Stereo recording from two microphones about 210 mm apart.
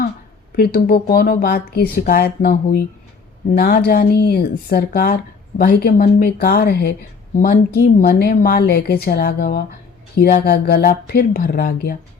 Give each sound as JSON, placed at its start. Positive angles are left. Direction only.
{"t": 0.5, "sound": "a woman's voice", "side_deg": 45}